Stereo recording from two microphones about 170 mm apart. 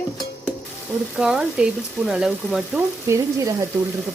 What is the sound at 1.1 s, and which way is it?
Sizzle, 5° right (ahead or behind).